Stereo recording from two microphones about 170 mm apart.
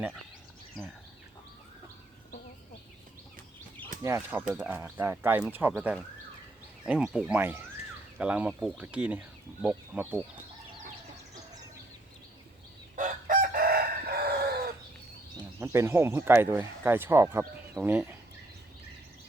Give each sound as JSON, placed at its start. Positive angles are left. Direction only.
{"t": 0.8, "sound": "speech", "side_deg": 0}
{"t": 4.0, "sound": "speech", "side_deg": -15}
{"t": 13.0, "sound": "chicken", "side_deg": -55}
{"t": 15.6, "sound": "speech", "side_deg": -15}